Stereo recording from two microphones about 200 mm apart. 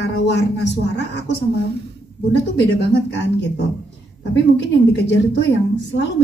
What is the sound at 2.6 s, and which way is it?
A woman's voice, 60° left (ahead or behind).